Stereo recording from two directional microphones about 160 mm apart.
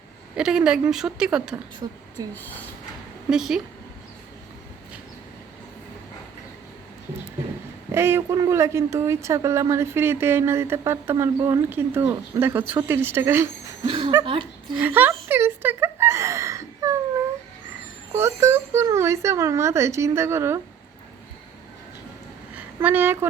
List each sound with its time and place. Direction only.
0.3 s a woman's voice: 5° right (ahead or behind)
1.8 s a woman's voice: 30° right (ahead or behind)
2.3 s speech: 10° left (ahead or behind)
3.2 s a woman's voice: centre (ahead or behind)
7.9 s speech: 15° right (ahead or behind)
13.8 s speech: 35° right (ahead or behind)
14.8 s a sound: 10° right (ahead or behind)
18.1 s speech: 15° right (ahead or behind)
22.5 s a sound: 10° right (ahead or behind)